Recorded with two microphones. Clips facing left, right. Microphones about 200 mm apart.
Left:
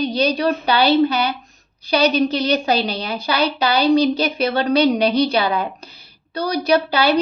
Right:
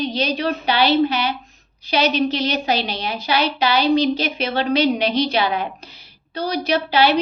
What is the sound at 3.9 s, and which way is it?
A woman's voice, 35° left (ahead or behind).